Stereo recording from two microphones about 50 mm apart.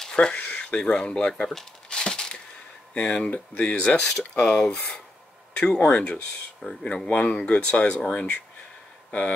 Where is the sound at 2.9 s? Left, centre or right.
Left.